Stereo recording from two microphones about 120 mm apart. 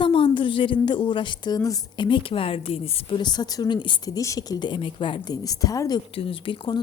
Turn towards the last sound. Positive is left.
turn(degrees=40)  # may be behind; listen again after turning